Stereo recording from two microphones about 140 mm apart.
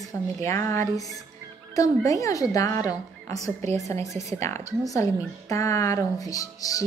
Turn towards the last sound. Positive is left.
turn(degrees=25)  # may be behind; listen again after turning